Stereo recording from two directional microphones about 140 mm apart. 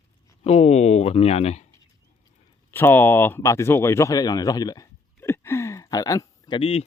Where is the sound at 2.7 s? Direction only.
15° left (ahead or behind).